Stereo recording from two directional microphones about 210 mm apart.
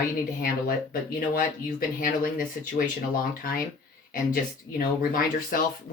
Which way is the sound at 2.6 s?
45° left (ahead or behind).